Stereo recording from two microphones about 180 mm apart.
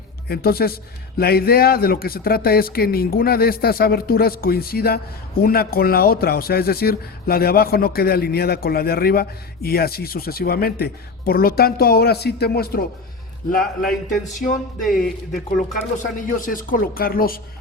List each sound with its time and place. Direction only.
0.3 s speech: 60° left (ahead or behind)
14.8 s speech: centre (ahead or behind)
15.5 s speech: 45° left (ahead or behind)